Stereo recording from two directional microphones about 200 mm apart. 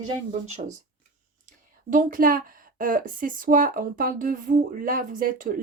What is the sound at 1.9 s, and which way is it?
A woman's voice, 45° right (ahead or behind).